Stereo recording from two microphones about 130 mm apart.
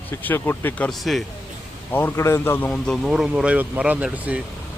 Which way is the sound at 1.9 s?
20° left (ahead or behind).